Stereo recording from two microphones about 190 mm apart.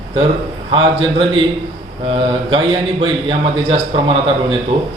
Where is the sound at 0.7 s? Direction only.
25° right (ahead or behind).